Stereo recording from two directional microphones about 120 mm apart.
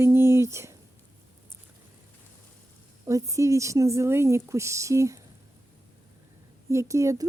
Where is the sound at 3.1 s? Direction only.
25° right (ahead or behind).